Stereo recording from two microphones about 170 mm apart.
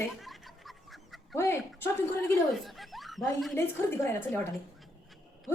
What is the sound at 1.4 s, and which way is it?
Speech, 15° left (ahead or behind).